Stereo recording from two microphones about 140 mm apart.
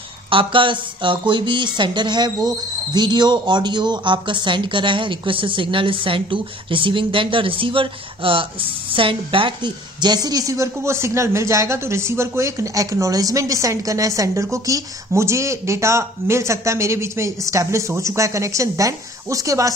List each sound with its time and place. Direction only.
0.3 s a woman's voice: 40° right (ahead or behind)